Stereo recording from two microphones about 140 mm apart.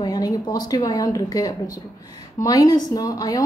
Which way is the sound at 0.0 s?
30° left (ahead or behind).